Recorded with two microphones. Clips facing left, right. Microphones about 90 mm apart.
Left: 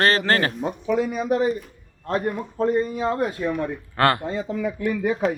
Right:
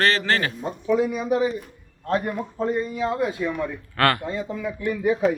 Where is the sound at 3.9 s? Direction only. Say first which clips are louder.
Left 1 dB; 25° left (ahead or behind).